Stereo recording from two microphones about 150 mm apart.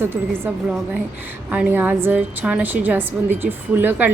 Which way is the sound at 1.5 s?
10° right (ahead or behind).